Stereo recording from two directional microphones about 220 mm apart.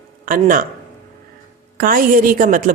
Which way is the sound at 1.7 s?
40° right (ahead or behind).